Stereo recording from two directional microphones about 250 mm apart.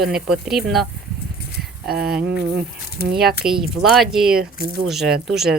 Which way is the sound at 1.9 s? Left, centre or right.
Right.